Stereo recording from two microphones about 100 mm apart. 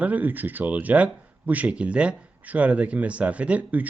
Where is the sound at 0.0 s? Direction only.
15° right (ahead or behind).